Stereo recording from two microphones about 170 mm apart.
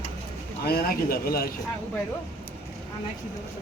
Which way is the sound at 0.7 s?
65° left (ahead or behind).